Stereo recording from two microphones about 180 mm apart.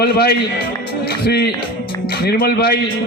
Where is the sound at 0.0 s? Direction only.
60° left (ahead or behind).